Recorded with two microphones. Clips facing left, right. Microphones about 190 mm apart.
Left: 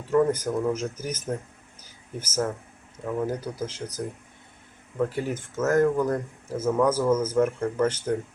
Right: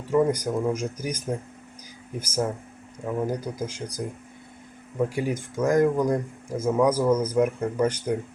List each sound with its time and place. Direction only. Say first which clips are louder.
0.1 s speech: even; 10° right (ahead or behind)